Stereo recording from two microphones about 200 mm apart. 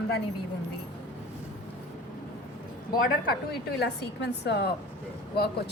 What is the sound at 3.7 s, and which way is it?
Speech, 55° left (ahead or behind).